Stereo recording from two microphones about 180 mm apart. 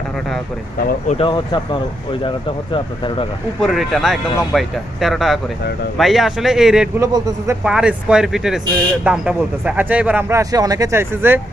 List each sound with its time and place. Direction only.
1.2 s speech: 25° left (ahead or behind)
2.7 s speech: 30° left (ahead or behind)
3.6 s speech: centre (ahead or behind)
7.0 s a man's voice: 20° right (ahead or behind)
7.6 s speech: 5° right (ahead or behind)